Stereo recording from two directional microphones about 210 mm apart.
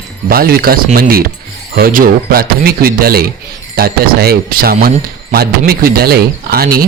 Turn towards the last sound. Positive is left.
turn(degrees=-45)  # may be behind; listen again after turning